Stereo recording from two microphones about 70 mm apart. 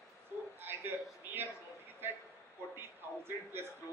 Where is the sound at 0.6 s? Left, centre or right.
Right.